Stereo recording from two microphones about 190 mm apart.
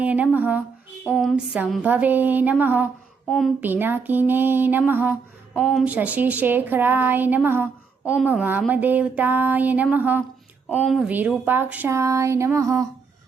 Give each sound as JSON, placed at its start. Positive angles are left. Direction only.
{"t": 0.0, "sound": "a woman's voice", "side_deg": -10}
{"t": 3.2, "sound": "speech", "side_deg": 0}
{"t": 3.6, "sound": "a woman's voice", "side_deg": -10}